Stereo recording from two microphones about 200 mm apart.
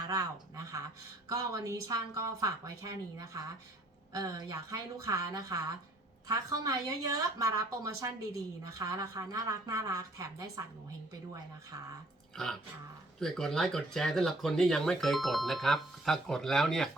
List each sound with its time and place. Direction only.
0.1 s a woman's voice: 15° right (ahead or behind)
12.4 s speech: centre (ahead or behind)